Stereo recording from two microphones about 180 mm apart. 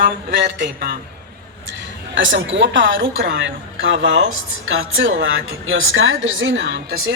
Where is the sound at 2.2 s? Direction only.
90° right.